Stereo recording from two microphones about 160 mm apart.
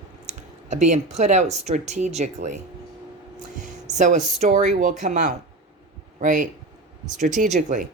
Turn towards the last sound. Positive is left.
turn(degrees=-50)  # may be behind; listen again after turning